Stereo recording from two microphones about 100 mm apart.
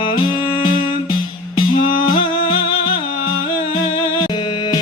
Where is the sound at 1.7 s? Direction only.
60° left (ahead or behind).